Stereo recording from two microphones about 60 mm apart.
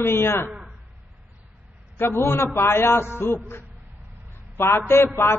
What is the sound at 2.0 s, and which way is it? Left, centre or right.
A man's voice, left.